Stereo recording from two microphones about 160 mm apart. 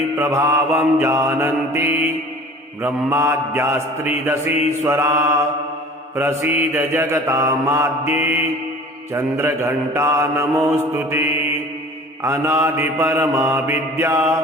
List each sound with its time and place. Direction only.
0.2 s mantra: 15° right (ahead or behind)